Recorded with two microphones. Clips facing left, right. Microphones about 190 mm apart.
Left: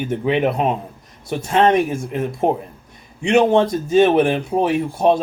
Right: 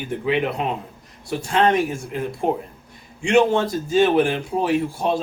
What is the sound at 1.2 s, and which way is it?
Speech, 20° left (ahead or behind).